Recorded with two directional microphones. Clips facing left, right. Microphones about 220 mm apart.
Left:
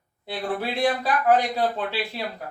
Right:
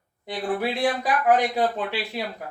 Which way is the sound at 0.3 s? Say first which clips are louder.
Right 2 dB; 15° right (ahead or behind).